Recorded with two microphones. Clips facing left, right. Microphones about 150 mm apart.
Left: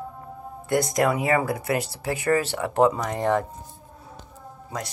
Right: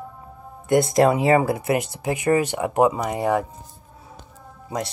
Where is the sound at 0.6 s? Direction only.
25° right (ahead or behind).